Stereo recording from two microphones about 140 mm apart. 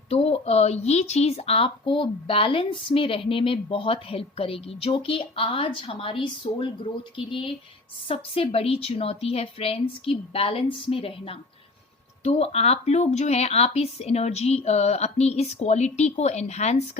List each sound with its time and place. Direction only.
0.1 s a woman's voice: 45° left (ahead or behind)